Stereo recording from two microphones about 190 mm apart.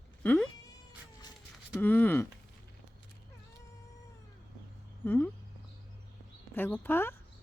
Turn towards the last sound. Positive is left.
turn(degrees=10)  # may be behind; listen again after turning